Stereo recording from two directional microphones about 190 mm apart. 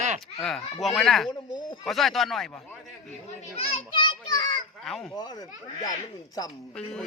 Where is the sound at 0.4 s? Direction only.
Centre (ahead or behind).